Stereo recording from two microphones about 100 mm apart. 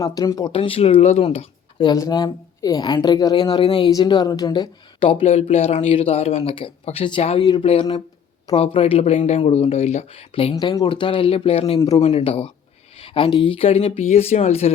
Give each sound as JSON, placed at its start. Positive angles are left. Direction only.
{"t": 0.0, "sound": "speech", "side_deg": 35}
{"t": 0.5, "sound": "speech", "side_deg": 65}
{"t": 1.8, "sound": "a woman's voice", "side_deg": 40}
{"t": 7.2, "sound": "speech", "side_deg": 90}
{"t": 7.6, "sound": "speech", "side_deg": 65}
{"t": 10.6, "sound": "speech", "side_deg": 50}
{"t": 13.0, "sound": "a sound", "side_deg": 65}
{"t": 13.3, "sound": "speech", "side_deg": 60}